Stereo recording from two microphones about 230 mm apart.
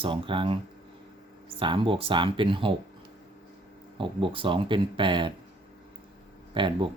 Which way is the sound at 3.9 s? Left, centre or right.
Right.